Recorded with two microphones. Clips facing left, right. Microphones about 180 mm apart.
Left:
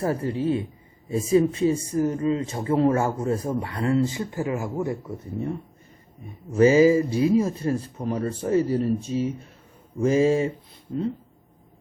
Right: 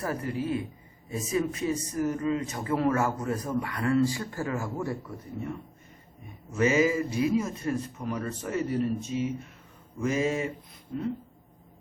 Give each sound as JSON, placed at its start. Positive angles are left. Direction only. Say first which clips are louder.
{"t": 0.0, "sound": "speech", "louder": "left 6 dB", "side_deg": 30}